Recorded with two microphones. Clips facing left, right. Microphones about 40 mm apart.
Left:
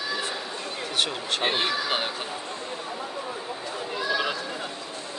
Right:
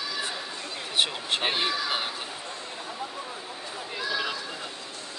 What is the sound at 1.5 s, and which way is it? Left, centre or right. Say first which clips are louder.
Speech: left 2 dB; centre.